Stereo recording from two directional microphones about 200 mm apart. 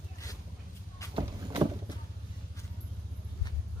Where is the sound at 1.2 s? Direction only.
20° right (ahead or behind).